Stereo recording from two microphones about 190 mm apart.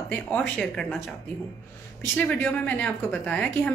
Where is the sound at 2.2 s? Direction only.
10° left (ahead or behind).